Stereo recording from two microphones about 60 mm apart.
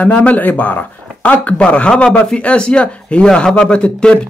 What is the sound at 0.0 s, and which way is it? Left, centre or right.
Speech, left.